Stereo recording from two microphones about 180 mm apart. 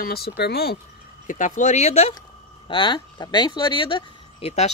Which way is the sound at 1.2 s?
45° left (ahead or behind).